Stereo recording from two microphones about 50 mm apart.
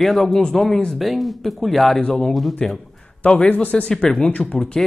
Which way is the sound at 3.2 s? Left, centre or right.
Left.